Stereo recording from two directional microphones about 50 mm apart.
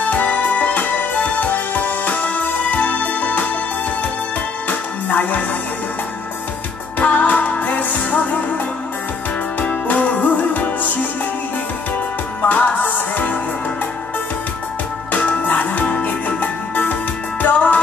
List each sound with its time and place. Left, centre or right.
0.0 s music: left
4.6 s music: left
7.0 s music: left
9.6 s music: left
12.4 s music: left
15.1 s music: left